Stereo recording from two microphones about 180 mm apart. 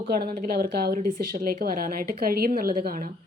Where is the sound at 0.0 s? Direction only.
55° right (ahead or behind).